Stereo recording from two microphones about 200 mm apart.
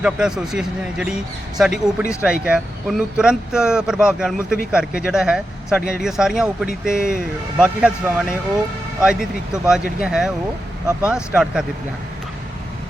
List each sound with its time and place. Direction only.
0.0 s speech: 5° right (ahead or behind)
9.6 s speech: 5° right (ahead or behind)